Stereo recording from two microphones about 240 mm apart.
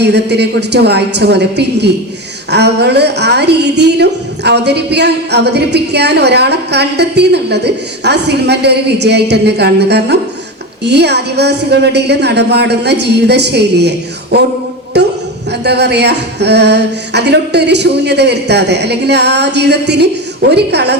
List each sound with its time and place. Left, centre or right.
0.0 s a woman's voice: right
14.9 s a sound: right
15.6 s a woman's voice: right